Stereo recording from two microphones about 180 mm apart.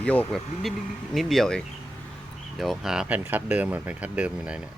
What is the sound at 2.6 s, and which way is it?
Speech, centre (ahead or behind).